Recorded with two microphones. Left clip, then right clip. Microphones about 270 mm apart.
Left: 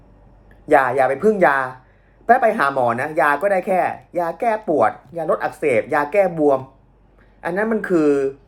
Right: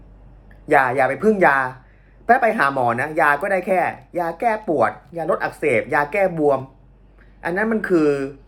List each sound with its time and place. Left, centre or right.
0.7 s speech: centre